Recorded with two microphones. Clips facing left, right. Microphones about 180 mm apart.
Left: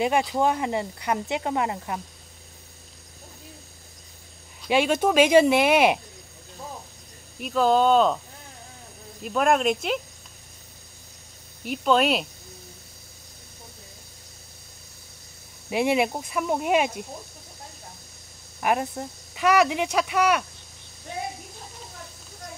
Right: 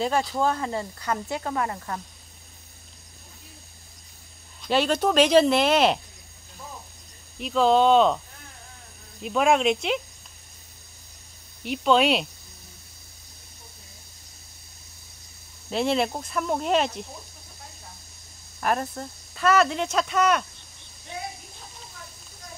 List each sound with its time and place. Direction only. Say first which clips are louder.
0.0 s speech: left 2 dB; 15° left (ahead or behind)
4.6 s speech: left 1 dB; 10° left (ahead or behind)
7.3 s speech: right 1 dB; 5° left (ahead or behind)
9.2 s speech: right 1 dB; centre (ahead or behind)
11.6 s speech: right 1 dB; 5° left (ahead or behind)
15.7 s speech: left 2 dB; 10° left (ahead or behind)
18.6 s speech: left 2 dB; 15° left (ahead or behind)